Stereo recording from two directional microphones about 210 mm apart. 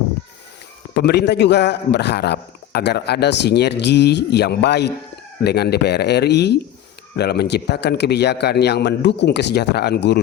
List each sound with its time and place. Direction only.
0.9 s a man's voice: 50° left (ahead or behind)